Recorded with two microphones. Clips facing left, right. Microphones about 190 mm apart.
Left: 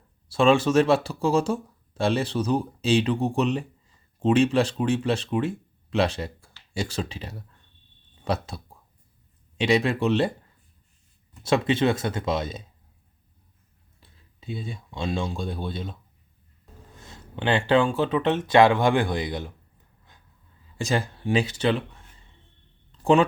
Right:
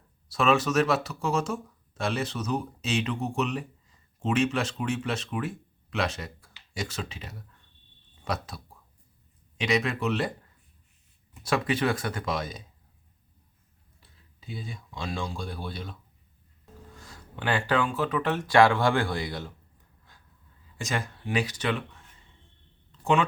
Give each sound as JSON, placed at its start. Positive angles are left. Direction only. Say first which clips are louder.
{"t": 0.3, "sound": "speech", "louder": "left 5 dB", "side_deg": 30}
{"t": 11.4, "sound": "speech", "louder": "left 5 dB", "side_deg": 25}
{"t": 14.0, "sound": "speech", "louder": "left 6 dB", "side_deg": 25}
{"t": 17.0, "sound": "speech", "louder": "left 5 dB", "side_deg": 25}
{"t": 20.1, "sound": "a sound", "louder": "left 2 dB", "side_deg": 20}
{"t": 20.7, "sound": "speech", "louder": "left 6 dB", "side_deg": 30}
{"t": 22.9, "sound": "a sound", "louder": "left 5 dB", "side_deg": 35}